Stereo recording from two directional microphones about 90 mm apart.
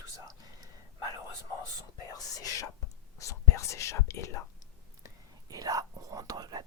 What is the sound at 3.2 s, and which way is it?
Whispering, 35° left (ahead or behind).